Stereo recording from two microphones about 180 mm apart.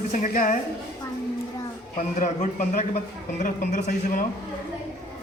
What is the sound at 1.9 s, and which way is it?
Speech, 45° left (ahead or behind).